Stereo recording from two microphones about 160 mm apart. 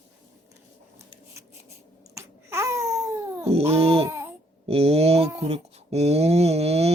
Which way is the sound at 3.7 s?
40° right (ahead or behind).